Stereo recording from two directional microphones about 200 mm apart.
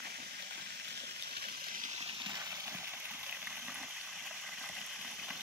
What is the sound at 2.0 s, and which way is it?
Water, 25° right (ahead or behind).